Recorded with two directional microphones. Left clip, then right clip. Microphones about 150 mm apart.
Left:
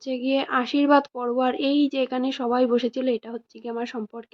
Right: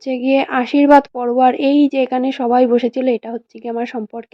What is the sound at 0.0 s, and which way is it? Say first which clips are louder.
Speech: right 9 dB; 35° right (ahead or behind).